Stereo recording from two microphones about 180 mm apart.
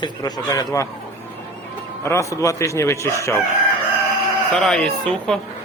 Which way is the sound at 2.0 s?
15° left (ahead or behind).